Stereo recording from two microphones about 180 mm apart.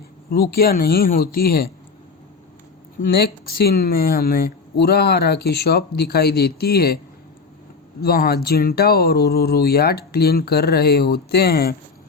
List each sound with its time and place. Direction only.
0.3 s speech: 55° left (ahead or behind)
3.2 s speech: 60° left (ahead or behind)
8.0 s speech: 60° left (ahead or behind)